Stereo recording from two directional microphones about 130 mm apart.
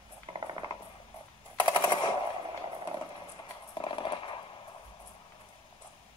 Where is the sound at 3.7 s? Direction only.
40° left (ahead or behind).